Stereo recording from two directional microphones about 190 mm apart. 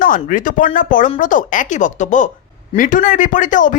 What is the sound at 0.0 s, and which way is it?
Speech, 45° left (ahead or behind).